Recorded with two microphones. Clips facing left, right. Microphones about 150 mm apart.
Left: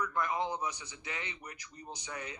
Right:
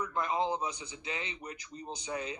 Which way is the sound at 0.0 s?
25° right (ahead or behind).